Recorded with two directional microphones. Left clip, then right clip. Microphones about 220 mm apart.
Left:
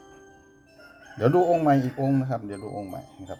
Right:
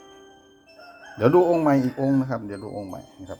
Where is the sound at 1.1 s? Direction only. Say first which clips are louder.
Right 3 dB; 10° right (ahead or behind).